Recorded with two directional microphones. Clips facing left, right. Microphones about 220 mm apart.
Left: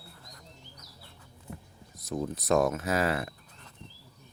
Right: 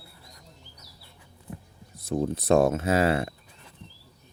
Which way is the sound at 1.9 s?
30° right (ahead or behind).